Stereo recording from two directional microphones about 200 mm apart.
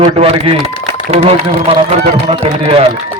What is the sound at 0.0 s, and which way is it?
A man's voice, 25° right (ahead or behind).